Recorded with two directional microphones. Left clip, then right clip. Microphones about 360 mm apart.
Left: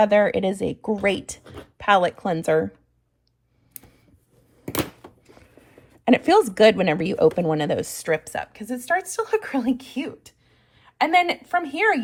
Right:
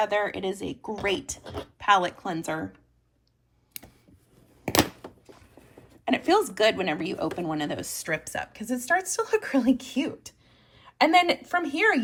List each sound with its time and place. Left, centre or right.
0.0 s speech: centre
4.7 s a sound: centre
6.1 s a woman's voice: centre